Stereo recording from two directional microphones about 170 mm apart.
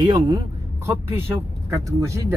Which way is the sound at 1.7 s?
20° right (ahead or behind).